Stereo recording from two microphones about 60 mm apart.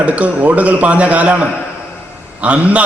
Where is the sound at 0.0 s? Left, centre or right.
Right.